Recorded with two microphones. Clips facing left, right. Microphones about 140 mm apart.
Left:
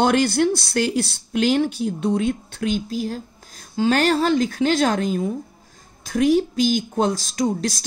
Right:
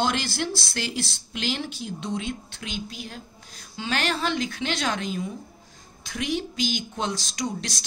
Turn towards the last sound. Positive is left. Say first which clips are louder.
# left 9 dB
turn(degrees=50)  # may be behind; listen again after turning